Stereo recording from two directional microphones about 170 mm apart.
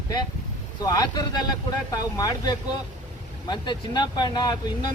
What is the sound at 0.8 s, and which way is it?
Speech, 20° left (ahead or behind).